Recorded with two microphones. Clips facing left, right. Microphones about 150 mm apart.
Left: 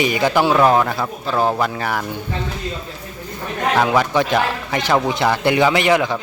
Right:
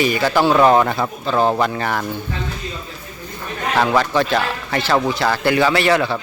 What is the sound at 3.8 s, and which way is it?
A man's voice, 10° left (ahead or behind).